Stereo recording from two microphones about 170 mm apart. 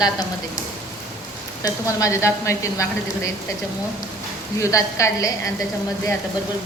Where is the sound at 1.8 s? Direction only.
15° left (ahead or behind).